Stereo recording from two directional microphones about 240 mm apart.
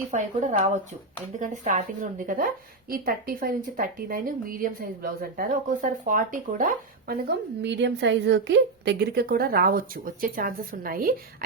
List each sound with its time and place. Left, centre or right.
0.1 s a woman's voice: right
7.6 s a woman's voice: right